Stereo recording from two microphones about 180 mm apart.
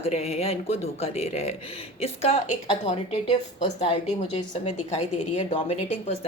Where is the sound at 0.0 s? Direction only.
35° left (ahead or behind).